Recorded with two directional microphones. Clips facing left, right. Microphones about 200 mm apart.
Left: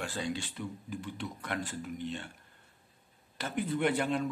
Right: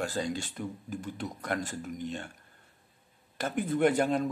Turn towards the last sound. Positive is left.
turn(degrees=-40)  # may be behind; listen again after turning